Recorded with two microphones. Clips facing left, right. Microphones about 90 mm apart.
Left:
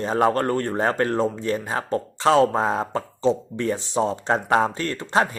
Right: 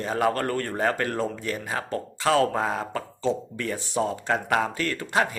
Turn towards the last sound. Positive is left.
turn(degrees=30)  # may be behind; listen again after turning